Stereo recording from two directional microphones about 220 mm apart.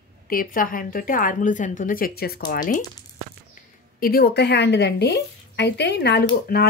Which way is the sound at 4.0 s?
45° left (ahead or behind).